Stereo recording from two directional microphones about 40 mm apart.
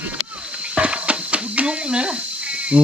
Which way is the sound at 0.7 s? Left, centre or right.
Right.